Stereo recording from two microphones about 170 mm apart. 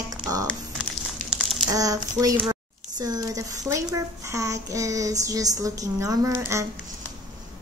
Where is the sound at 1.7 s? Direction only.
20° right (ahead or behind).